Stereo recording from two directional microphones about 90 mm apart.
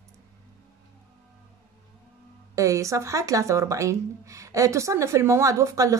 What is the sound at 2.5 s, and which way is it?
Speech, 35° right (ahead or behind).